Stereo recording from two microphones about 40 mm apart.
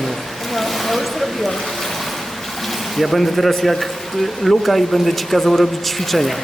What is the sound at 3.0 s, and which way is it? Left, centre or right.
Speech, centre.